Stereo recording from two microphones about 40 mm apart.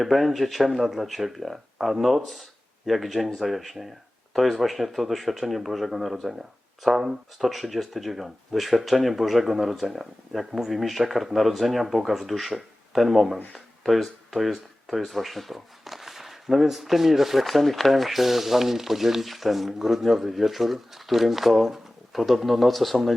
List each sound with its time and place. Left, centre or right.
0.0 s speech: centre